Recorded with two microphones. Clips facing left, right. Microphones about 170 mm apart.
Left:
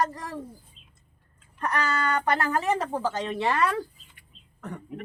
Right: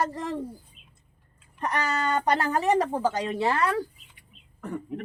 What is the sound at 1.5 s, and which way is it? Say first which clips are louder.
Speech: even; 20° right (ahead or behind).